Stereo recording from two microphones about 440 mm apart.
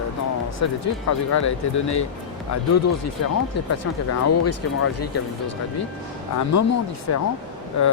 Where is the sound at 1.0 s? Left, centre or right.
Left.